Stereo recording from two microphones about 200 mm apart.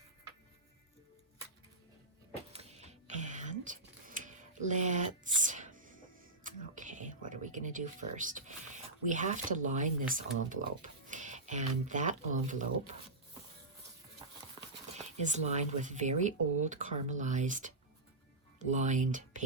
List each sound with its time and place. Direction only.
2.5 s a sound: 30° right (ahead or behind)
11.1 s speech: 35° right (ahead or behind)
14.9 s speech: 35° right (ahead or behind)